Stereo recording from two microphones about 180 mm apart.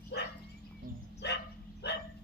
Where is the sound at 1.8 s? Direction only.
70° left (ahead or behind).